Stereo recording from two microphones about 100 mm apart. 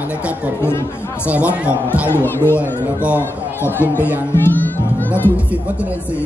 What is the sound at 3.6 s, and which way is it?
Speech, 20° left (ahead or behind).